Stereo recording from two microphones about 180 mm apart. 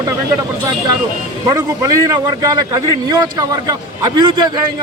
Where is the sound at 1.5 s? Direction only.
20° right (ahead or behind).